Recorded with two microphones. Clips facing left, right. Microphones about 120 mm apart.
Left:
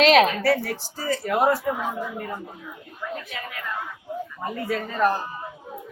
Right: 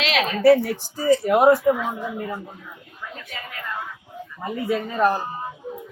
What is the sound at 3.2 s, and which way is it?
Speech, centre (ahead or behind).